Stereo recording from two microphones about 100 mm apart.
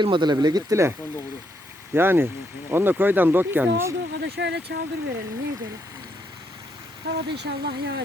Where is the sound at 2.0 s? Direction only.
20° right (ahead or behind).